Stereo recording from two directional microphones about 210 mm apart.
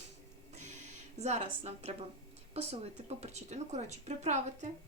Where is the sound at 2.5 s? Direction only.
30° right (ahead or behind).